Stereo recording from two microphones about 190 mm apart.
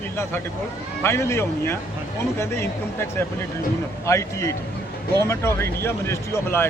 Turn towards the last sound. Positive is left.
turn(degrees=15)  # may be behind; listen again after turning